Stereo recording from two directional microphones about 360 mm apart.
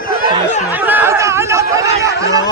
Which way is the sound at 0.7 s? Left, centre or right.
Centre.